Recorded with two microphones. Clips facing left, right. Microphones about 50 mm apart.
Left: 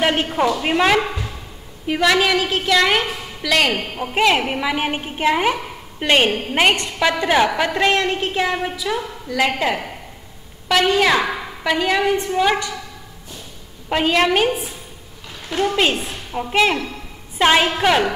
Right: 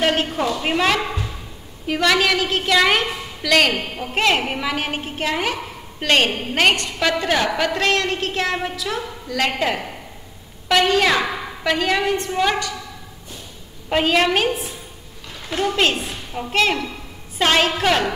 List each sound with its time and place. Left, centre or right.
0.0 s a sound: centre
0.5 s a woman's voice: centre
13.8 s a woman's voice: centre
15.5 s a woman's voice: centre